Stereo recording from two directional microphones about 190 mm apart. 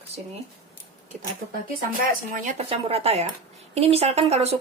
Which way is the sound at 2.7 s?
30° right (ahead or behind).